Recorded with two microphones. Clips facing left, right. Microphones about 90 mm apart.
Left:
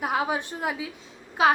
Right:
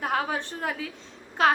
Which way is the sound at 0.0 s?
10° left (ahead or behind).